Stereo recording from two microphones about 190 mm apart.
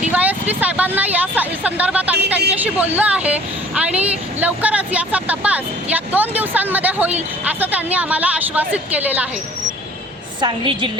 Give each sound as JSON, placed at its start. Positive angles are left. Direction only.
{"t": 0.1, "sound": "a woman's voice", "side_deg": -10}
{"t": 10.4, "sound": "a woman's voice", "side_deg": -25}